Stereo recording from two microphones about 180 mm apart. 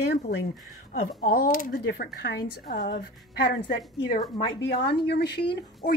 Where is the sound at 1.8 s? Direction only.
65° left (ahead or behind).